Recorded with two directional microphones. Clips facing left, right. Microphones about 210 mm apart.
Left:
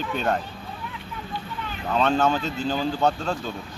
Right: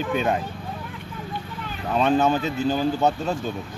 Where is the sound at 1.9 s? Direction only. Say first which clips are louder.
Right 2 dB; 10° right (ahead or behind).